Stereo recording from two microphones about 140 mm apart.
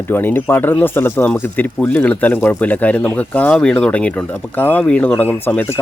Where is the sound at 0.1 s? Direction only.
15° left (ahead or behind).